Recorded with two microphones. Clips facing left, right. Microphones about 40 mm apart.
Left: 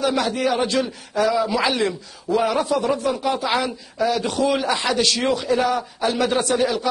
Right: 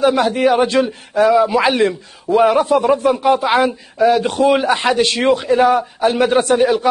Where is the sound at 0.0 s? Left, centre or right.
Right.